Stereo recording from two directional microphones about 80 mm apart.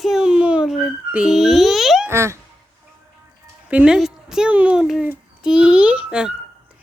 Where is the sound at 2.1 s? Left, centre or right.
Right.